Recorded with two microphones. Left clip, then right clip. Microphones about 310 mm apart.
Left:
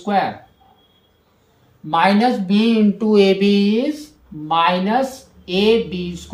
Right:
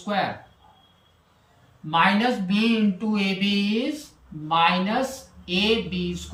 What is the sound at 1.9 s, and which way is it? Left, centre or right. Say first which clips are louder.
Speech: left 5 dB; centre.